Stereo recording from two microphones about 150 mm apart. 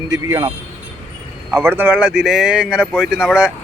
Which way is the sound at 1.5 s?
15° right (ahead or behind).